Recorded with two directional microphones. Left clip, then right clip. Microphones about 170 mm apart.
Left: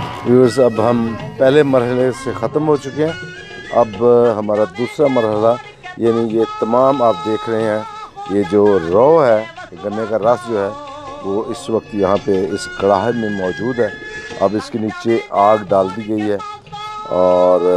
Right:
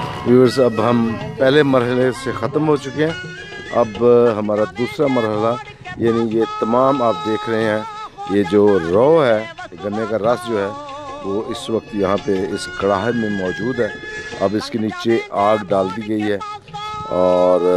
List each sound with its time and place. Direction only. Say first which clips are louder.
0.3 s speech: left 2 dB; 10° right (ahead or behind)
14.7 s speech: left 1 dB; 20° right (ahead or behind)
17.1 s brass instrument: left 2 dB; 20° right (ahead or behind)